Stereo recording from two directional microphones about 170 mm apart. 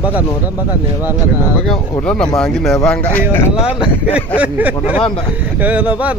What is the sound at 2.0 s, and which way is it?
Speech, 5° left (ahead or behind).